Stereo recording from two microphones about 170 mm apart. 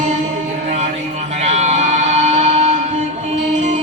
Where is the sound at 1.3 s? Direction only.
40° right (ahead or behind).